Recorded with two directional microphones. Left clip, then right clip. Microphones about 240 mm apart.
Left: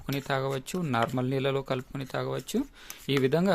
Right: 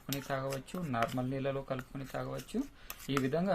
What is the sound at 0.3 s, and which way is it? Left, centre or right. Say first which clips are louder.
Speech: left 8 dB; left.